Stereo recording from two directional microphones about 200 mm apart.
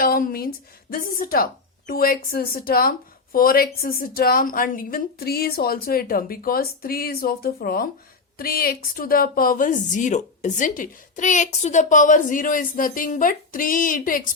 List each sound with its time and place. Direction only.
0.0 s speech: 45° left (ahead or behind)